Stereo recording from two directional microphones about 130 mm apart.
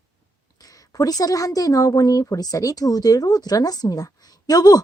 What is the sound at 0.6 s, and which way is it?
A woman's voice, 30° left (ahead or behind).